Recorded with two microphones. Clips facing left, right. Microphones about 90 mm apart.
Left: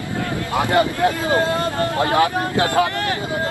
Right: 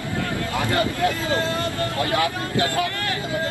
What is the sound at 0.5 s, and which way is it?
Speech, 20° left (ahead or behind).